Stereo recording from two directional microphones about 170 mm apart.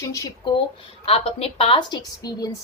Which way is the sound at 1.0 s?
35° left (ahead or behind).